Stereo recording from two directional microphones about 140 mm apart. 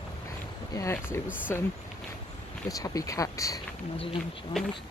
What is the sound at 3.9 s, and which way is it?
Speech, 40° left (ahead or behind).